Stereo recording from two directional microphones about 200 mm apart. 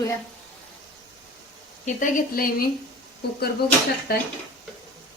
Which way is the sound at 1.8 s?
40° left (ahead or behind).